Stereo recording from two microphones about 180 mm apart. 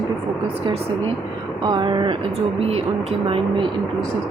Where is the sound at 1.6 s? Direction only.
25° right (ahead or behind).